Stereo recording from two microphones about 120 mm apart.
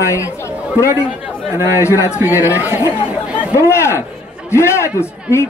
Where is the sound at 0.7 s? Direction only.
25° left (ahead or behind).